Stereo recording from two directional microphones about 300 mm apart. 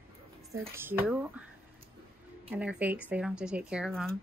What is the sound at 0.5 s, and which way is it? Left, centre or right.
Speech, centre.